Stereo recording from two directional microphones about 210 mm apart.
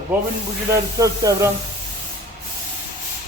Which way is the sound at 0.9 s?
15° right (ahead or behind).